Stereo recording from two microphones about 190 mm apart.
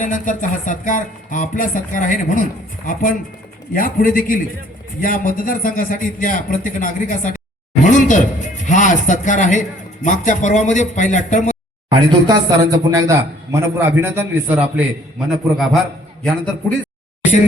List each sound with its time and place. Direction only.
0.0 s speech: 45° left (ahead or behind)
11.9 s a man's voice: 20° right (ahead or behind); by 15.8 s centre (ahead or behind)